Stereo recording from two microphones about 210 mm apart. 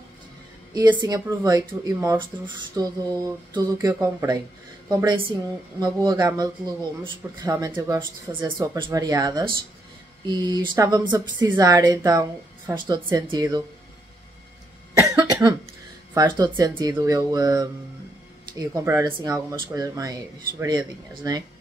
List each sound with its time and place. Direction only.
0.7 s a woman's voice: 20° right (ahead or behind)
15.0 s cough: 15° right (ahead or behind)
16.2 s speech: 20° right (ahead or behind)